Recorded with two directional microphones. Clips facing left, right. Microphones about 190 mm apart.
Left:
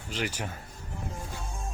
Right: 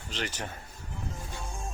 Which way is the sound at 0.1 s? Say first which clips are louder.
Left 3 dB; 10° left (ahead or behind).